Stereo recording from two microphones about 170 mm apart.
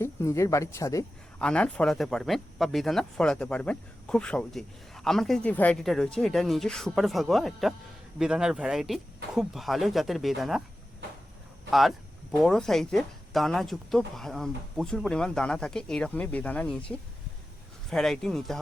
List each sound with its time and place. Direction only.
0.0 s speech: 15° left (ahead or behind)
1.4 s speech: 5° left (ahead or behind)
11.7 s speech: centre (ahead or behind)